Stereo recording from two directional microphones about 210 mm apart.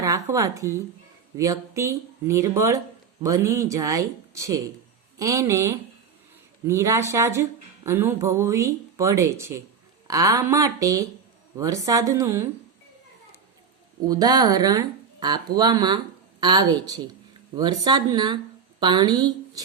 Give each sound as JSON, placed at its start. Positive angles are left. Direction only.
{"t": 0.0, "sound": "speech", "side_deg": -15}
{"t": 14.1, "sound": "a woman's voice", "side_deg": -20}